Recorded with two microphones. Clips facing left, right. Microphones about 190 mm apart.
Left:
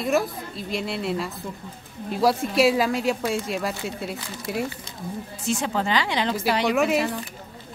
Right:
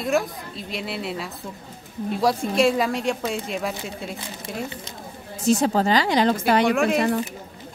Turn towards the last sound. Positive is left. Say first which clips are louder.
# right 1 dB
turn(degrees=0)  # may be behind; listen again after turning